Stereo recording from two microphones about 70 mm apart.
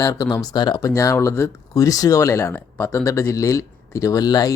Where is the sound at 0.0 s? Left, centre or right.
Left.